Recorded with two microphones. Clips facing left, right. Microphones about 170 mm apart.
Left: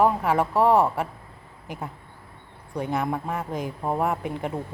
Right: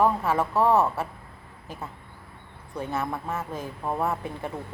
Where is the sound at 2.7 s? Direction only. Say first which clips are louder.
Left 3 dB; 15° left (ahead or behind).